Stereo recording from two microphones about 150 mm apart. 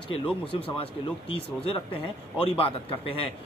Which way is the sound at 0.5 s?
35° left (ahead or behind).